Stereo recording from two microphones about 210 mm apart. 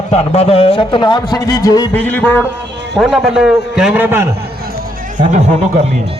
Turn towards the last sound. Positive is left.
turn(degrees=-35)  # may be behind; listen again after turning